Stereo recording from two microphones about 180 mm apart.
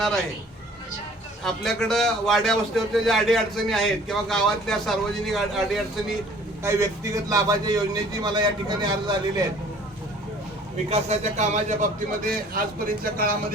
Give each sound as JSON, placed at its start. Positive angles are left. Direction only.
{"t": 1.5, "sound": "a man's voice", "side_deg": 0}
{"t": 6.6, "sound": "a man's voice", "side_deg": -15}
{"t": 10.8, "sound": "a man's voice", "side_deg": -35}
{"t": 12.5, "sound": "speech", "side_deg": -55}